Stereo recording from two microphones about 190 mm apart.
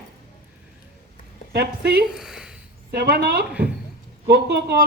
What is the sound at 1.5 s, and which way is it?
Speech, 60° right (ahead or behind).